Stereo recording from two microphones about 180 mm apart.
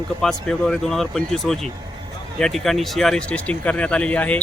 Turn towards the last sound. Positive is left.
turn(degrees=10)  # may be behind; listen again after turning